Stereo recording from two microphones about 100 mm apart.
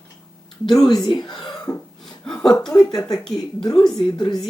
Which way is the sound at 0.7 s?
Centre (ahead or behind).